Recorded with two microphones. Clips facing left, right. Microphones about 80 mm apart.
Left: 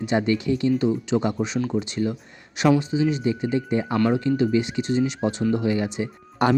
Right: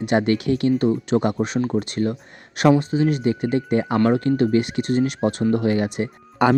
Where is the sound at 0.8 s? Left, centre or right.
Right.